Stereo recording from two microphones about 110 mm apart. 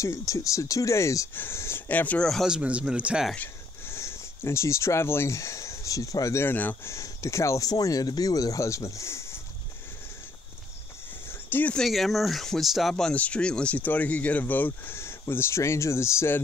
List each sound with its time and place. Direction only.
0.0 s speech: 30° left (ahead or behind)
2.2 s speech: centre (ahead or behind)
3.3 s speech: 20° left (ahead or behind)
11.2 s a sound: 20° left (ahead or behind)
11.7 s speech: centre (ahead or behind); by 16.4 s 20° left (ahead or behind)